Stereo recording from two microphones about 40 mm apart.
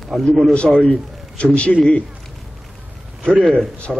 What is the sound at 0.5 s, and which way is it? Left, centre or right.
Speech, left.